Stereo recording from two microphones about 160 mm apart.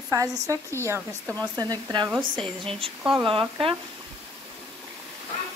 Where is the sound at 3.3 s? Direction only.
35° right (ahead or behind).